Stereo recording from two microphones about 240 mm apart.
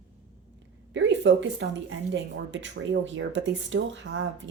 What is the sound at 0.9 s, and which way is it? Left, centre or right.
A woman's voice, right.